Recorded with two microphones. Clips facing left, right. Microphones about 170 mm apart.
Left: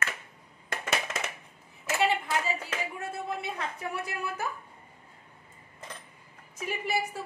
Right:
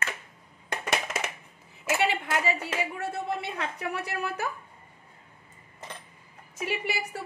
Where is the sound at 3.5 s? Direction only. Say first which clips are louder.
Right 2 dB; 75° right (ahead or behind).